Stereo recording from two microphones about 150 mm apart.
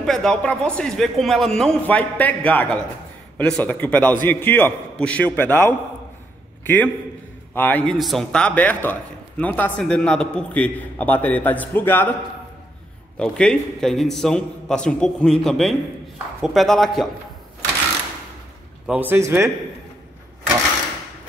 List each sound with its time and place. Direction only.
0.0 s a man's voice: 5° left (ahead or behind)
13.2 s speech: 5° left (ahead or behind)
18.9 s speech: 10° right (ahead or behind)